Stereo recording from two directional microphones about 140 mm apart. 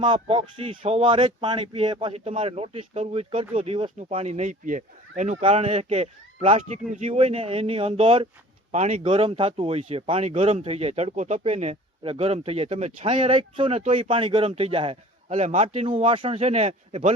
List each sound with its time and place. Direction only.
0.0 s speech: 35° right (ahead or behind); by 5.4 s 60° right (ahead or behind)
5.4 s speech: 50° right (ahead or behind)
9.0 s speech: 40° right (ahead or behind)
15.3 s speech: 60° right (ahead or behind)